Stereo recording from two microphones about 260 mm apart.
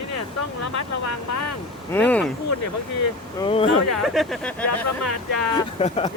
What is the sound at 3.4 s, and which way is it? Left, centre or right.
Speech, left.